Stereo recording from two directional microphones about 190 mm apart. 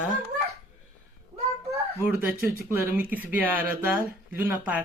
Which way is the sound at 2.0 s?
10° right (ahead or behind).